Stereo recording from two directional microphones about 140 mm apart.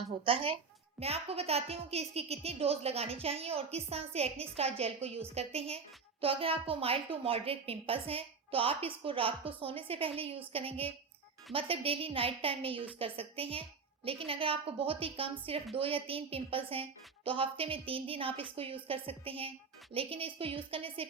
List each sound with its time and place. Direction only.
0.3 s a woman's voice: 40° right (ahead or behind)